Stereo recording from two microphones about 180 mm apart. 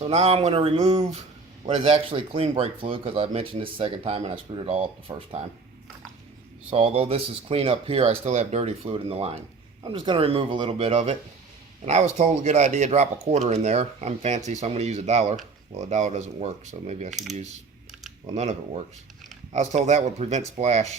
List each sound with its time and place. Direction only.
0.0 s speech: 35° right (ahead or behind)
6.7 s speech: 35° right (ahead or behind)
17.1 s coin: centre (ahead or behind)
19.5 s speech: 40° right (ahead or behind)